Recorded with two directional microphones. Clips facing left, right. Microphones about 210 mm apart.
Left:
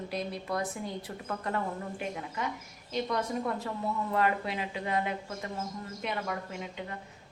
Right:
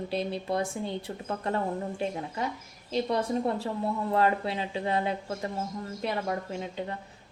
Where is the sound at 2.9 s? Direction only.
30° right (ahead or behind).